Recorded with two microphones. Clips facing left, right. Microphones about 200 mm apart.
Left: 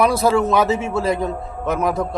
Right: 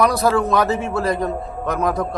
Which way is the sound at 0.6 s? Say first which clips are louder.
Left 1 dB; 25° left (ahead or behind).